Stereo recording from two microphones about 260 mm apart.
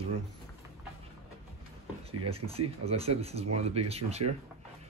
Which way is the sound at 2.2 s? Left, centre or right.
Right.